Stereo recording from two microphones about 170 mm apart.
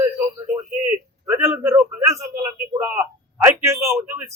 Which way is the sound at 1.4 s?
15° right (ahead or behind).